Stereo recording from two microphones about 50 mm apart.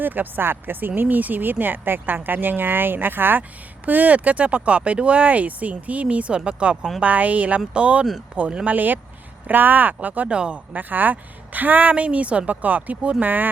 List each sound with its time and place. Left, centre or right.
0.0 s speech: right
3.8 s speech: right
8.6 s speech: right
10.3 s speech: centre
10.8 s speech: right
13.2 s speech: right